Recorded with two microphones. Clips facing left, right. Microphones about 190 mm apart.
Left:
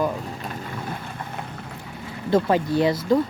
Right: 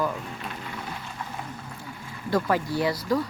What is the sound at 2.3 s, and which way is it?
Speech, 20° left (ahead or behind).